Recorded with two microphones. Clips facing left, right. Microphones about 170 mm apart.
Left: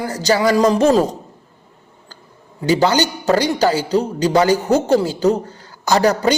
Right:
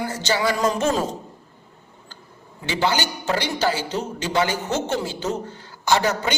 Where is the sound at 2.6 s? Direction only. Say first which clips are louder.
Left 8 dB; 40° left (ahead or behind).